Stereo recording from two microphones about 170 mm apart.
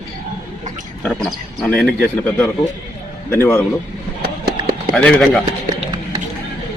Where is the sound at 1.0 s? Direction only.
Centre (ahead or behind).